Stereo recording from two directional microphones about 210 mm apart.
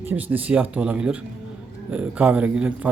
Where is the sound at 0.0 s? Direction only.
10° right (ahead or behind).